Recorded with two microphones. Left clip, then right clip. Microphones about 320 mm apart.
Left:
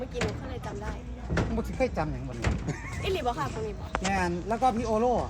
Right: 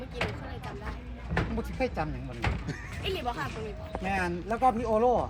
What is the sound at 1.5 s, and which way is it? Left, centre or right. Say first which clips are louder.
Speech: left 5 dB; centre.